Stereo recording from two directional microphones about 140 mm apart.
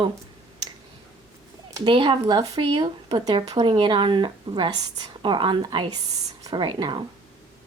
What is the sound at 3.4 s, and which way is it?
Speech, 50° right (ahead or behind).